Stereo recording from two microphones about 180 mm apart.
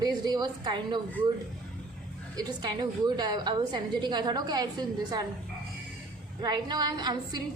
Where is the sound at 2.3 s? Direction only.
20° right (ahead or behind).